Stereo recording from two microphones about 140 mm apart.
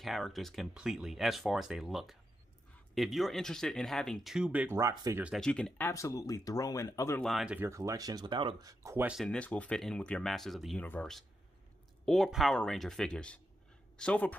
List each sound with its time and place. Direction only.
0.0 s speech: centre (ahead or behind); by 5.2 s 20° right (ahead or behind)
5.4 s speech: 5° left (ahead or behind)
5.9 s speech: 20° left (ahead or behind)
7.2 s speech: centre (ahead or behind); by 9.0 s 25° right (ahead or behind)
9.2 s speech: 10° left (ahead or behind)